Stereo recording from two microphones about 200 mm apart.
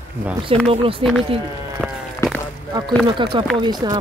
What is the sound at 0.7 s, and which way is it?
Speech, 25° right (ahead or behind).